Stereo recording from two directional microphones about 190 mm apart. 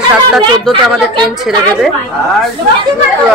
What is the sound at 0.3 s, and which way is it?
A woman's voice, centre (ahead or behind).